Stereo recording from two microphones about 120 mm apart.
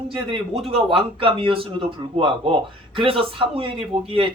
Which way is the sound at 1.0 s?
45° right (ahead or behind).